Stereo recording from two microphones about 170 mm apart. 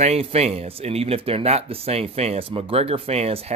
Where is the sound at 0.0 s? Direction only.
35° right (ahead or behind).